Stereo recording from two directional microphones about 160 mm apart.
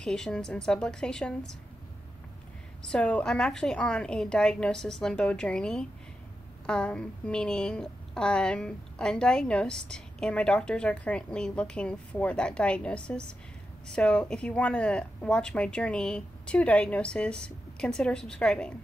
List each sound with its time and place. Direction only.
0.0 s a woman's voice: 5° left (ahead or behind)
2.9 s a woman's voice: 5° left (ahead or behind)